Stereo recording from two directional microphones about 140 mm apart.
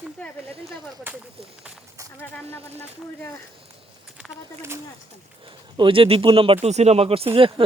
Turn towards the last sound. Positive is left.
turn(degrees=-40)  # may be behind; listen again after turning